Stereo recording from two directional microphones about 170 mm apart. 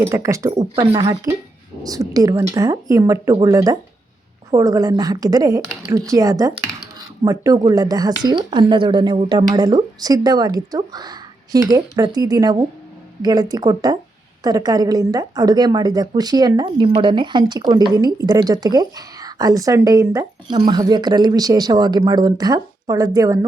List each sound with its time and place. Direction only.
0.1 s a woman's voice: 20° right (ahead or behind)